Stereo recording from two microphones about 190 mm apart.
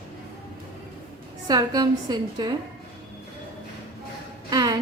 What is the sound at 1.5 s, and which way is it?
A woman's voice, 20° right (ahead or behind).